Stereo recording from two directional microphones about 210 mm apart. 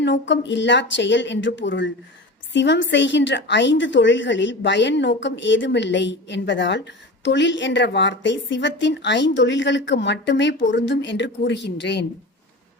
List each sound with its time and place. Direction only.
0.0 s a woman's voice: 55° left (ahead or behind)